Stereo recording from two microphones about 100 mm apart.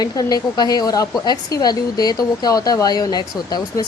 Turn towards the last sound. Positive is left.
turn(degrees=40)  # may be behind; listen again after turning